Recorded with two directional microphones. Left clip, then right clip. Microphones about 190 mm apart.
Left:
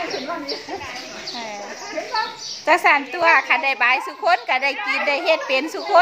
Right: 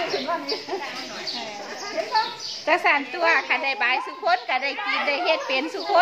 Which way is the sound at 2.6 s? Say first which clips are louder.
Left 5 dB; 40° left (ahead or behind).